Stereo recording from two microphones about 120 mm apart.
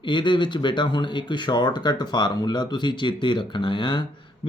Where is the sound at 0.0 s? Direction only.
40° left (ahead or behind).